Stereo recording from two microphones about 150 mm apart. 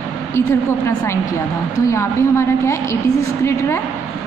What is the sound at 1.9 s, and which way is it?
A woman's voice, 20° left (ahead or behind).